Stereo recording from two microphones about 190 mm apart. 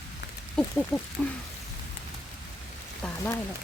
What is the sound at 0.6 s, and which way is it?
Speech, 5° left (ahead or behind).